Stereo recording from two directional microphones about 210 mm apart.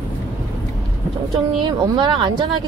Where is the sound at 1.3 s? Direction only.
20° right (ahead or behind).